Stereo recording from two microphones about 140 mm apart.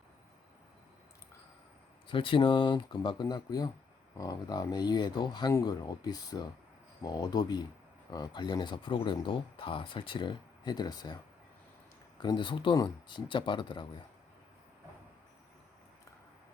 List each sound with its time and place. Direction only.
2.0 s speech: 40° left (ahead or behind)
12.2 s speech: 35° left (ahead or behind)